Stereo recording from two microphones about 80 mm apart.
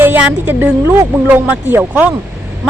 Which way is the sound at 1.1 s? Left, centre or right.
Centre.